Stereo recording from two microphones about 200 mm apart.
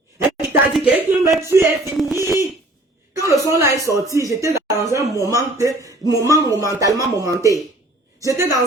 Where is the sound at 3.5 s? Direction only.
15° right (ahead or behind).